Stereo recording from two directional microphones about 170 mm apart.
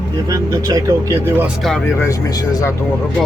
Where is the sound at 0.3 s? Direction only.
20° right (ahead or behind).